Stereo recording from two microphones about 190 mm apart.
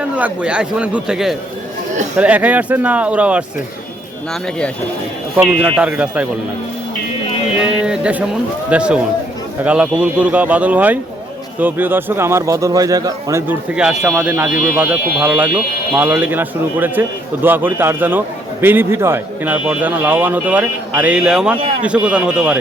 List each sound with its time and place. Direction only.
0.0 s a man's voice: 5° right (ahead or behind)
5.4 s speech: 5° right (ahead or behind)
7.9 s a man's voice: 5° right (ahead or behind)
13.7 s a man's voice: 5° right (ahead or behind)